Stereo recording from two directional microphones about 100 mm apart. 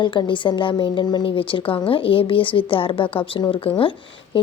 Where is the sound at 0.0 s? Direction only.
50° left (ahead or behind).